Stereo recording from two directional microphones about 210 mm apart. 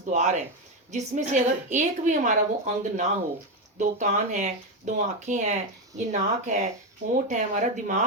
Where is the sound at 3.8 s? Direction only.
35° right (ahead or behind).